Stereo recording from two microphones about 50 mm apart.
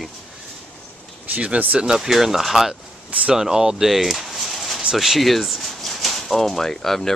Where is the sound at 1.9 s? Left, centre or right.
Centre.